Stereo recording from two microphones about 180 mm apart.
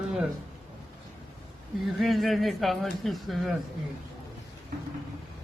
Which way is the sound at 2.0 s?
Centre (ahead or behind).